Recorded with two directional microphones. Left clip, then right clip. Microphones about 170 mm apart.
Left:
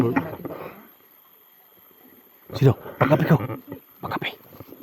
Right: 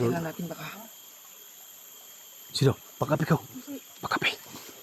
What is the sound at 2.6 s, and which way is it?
Speech, 50° left (ahead or behind).